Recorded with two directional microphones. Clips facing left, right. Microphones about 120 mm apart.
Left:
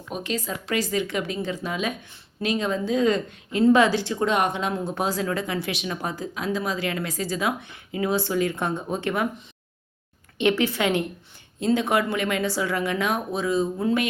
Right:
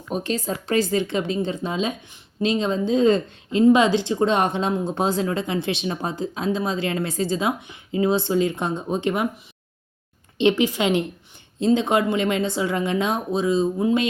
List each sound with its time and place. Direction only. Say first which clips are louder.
0.1 s a woman's voice: right 4 dB; 35° right (ahead or behind)
3.6 s a woman's voice: right 2 dB; 15° right (ahead or behind)
10.3 s a woman's voice: right 3 dB; 20° right (ahead or behind)